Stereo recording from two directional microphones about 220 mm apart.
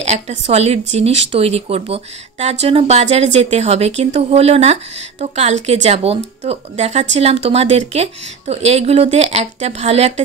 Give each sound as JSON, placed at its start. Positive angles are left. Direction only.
{"t": 0.0, "sound": "speech", "side_deg": -30}